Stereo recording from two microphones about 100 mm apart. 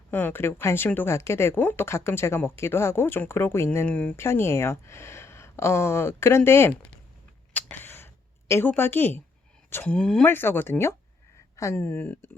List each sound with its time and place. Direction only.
0.1 s speech: 20° left (ahead or behind)
3.8 s speech: 15° left (ahead or behind)
4.2 s speech: 25° left (ahead or behind)
7.5 s a sound: 20° left (ahead or behind)
9.6 s speech: 20° left (ahead or behind)
9.9 s speech: 5° left (ahead or behind)
10.2 s speech: 20° left (ahead or behind)
11.8 s speech: 20° left (ahead or behind)